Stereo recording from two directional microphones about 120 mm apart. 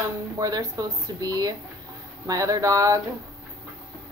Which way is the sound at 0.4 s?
30° right (ahead or behind).